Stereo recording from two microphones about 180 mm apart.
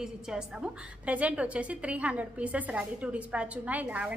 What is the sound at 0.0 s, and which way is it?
A woman's voice, 5° right (ahead or behind).